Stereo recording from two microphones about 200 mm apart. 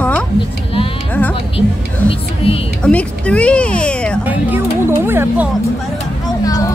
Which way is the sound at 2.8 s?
5° left (ahead or behind).